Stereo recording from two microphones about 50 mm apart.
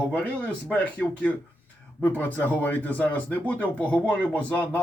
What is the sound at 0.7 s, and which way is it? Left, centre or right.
Speech, left.